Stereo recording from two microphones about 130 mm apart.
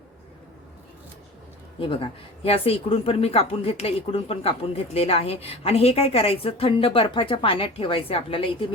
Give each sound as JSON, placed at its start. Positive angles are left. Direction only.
{"t": 1.8, "sound": "speech", "side_deg": 45}